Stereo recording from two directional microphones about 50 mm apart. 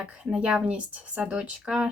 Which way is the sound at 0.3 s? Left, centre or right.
Centre.